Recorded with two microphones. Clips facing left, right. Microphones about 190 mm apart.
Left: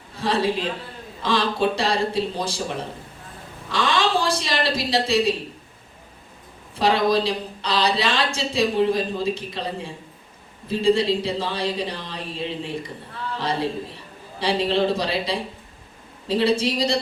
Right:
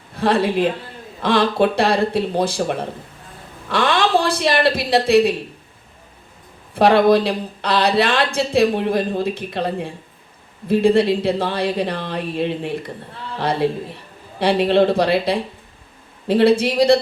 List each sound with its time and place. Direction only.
0.2 s speech: 60° right (ahead or behind)
6.7 s a man's voice: 60° right (ahead or behind)